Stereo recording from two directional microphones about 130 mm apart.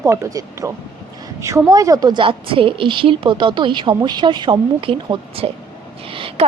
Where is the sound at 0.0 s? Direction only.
20° right (ahead or behind).